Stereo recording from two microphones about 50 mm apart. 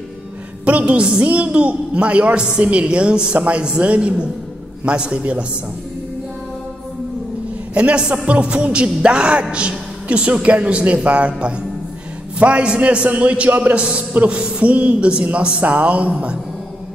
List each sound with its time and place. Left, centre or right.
0.7 s a man's voice: right
7.7 s a man's voice: right